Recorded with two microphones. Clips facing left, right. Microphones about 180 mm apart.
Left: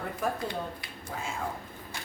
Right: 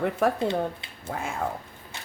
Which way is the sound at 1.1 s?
60° right (ahead or behind).